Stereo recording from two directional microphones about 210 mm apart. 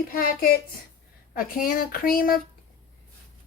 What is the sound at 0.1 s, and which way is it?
A child's voice, 45° left (ahead or behind).